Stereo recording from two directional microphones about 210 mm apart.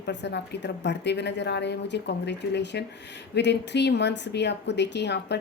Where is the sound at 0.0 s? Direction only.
55° left (ahead or behind).